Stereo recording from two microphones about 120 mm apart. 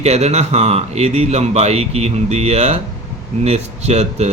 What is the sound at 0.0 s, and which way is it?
Speech, 65° right (ahead or behind).